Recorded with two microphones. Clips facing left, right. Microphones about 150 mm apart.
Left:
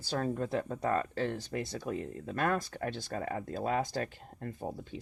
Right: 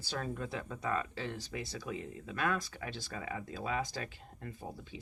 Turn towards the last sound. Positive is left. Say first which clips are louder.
# left 6 dB
turn(degrees=50)  # may be behind; listen again after turning